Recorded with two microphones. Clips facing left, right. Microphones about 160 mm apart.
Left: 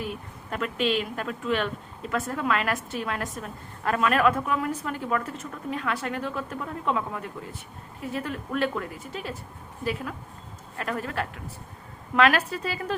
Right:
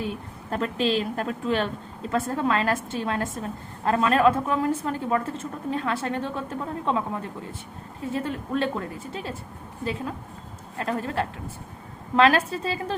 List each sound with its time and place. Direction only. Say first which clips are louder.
0.1 s a woman's voice: right 3 dB; 35° right (ahead or behind)